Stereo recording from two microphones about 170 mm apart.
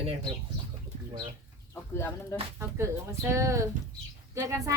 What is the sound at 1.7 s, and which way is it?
Speech, 15° left (ahead or behind).